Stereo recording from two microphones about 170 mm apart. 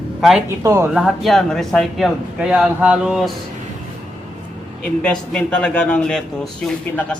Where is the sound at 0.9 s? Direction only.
Centre (ahead or behind).